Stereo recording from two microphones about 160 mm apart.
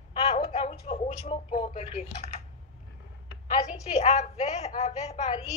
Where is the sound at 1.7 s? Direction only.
50° left (ahead or behind).